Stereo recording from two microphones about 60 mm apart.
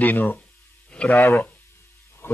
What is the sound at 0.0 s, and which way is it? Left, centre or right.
A man's voice, left.